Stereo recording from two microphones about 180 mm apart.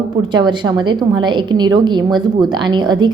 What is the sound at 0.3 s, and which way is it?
A woman's voice, 25° right (ahead or behind).